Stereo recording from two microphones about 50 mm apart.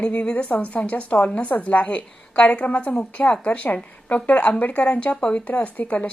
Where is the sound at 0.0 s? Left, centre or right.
Left.